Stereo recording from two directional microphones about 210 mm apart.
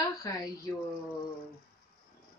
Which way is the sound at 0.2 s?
15° left (ahead or behind).